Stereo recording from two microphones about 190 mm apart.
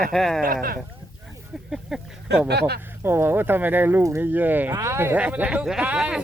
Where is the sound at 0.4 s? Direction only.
50° right (ahead or behind).